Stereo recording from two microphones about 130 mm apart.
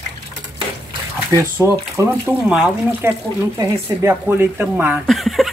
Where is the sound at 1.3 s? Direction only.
20° right (ahead or behind).